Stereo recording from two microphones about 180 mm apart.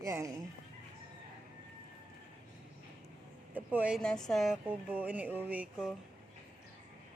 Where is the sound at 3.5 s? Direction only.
10° right (ahead or behind).